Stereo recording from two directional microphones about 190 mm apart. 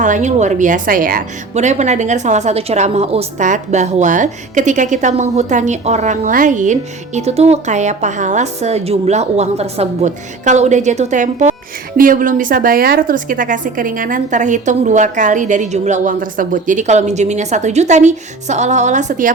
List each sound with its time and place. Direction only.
0.0 s a woman's voice: 40° right (ahead or behind)